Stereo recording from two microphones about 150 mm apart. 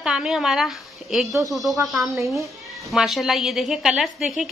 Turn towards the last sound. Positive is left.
turn(degrees=0)  # may be behind; listen again after turning